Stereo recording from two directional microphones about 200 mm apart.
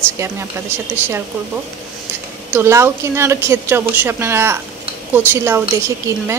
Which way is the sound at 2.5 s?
15° right (ahead or behind).